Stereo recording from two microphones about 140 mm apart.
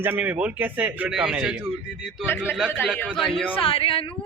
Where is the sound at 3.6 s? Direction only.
40° left (ahead or behind).